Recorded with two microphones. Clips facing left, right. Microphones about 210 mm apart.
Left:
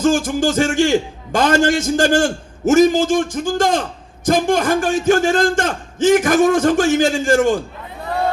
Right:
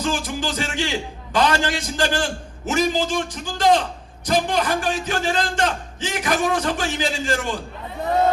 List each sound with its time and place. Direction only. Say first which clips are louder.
0.0 s a man's voice: left 9 dB; 45° left (ahead or behind)